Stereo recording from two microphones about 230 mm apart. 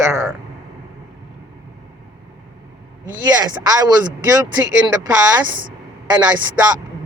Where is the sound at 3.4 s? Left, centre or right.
Centre.